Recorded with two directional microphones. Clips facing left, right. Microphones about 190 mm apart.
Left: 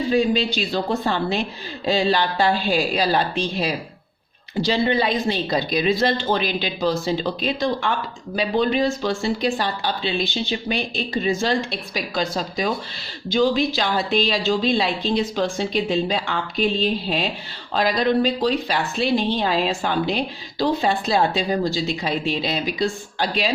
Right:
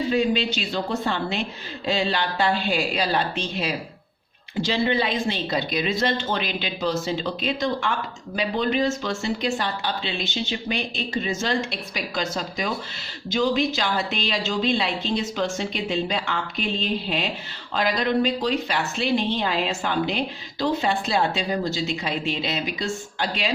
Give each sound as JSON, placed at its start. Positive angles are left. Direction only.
{"t": 0.1, "sound": "a woman's voice", "side_deg": 35}